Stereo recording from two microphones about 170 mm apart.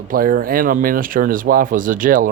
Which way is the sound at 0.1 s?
60° right (ahead or behind).